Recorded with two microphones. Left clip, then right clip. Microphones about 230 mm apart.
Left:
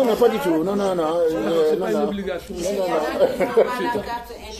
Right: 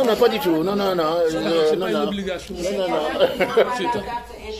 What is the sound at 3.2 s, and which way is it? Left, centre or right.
Speech, right.